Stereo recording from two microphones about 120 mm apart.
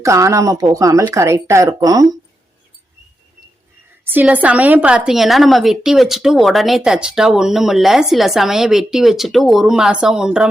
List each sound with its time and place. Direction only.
0.0 s speech: 25° right (ahead or behind)
4.0 s a woman's voice: 15° right (ahead or behind)